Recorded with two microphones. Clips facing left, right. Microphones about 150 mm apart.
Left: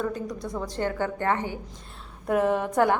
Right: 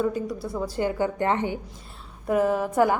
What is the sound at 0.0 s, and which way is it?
A woman's voice, 5° right (ahead or behind).